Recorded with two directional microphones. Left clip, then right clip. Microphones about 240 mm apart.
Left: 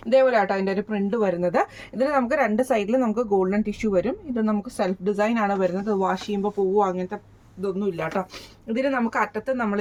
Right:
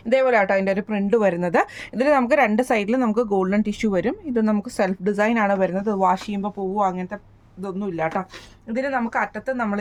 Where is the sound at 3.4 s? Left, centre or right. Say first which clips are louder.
Right 2 dB; right.